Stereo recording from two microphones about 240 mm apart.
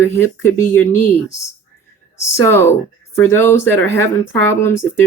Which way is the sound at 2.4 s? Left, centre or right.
Centre.